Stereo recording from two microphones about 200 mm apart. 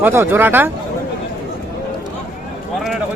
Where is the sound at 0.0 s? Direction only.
10° right (ahead or behind).